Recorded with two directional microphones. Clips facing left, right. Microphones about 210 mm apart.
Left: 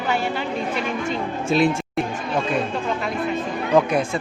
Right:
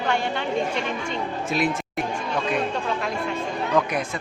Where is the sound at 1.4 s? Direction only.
25° left (ahead or behind).